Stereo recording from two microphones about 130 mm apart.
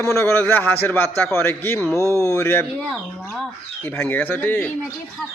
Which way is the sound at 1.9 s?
25° right (ahead or behind).